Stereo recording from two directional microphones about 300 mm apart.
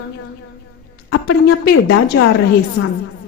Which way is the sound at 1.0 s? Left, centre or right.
Left.